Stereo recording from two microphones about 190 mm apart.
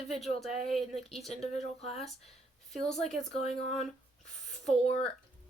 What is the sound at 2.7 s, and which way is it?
Speech, centre (ahead or behind).